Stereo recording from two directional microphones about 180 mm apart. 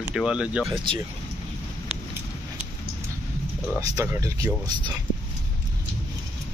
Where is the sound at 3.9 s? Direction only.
15° right (ahead or behind).